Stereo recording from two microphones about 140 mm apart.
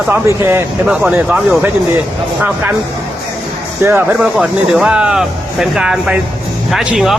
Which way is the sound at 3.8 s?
15° right (ahead or behind).